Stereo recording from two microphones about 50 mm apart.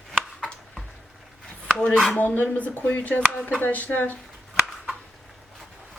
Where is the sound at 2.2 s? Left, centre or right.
Left.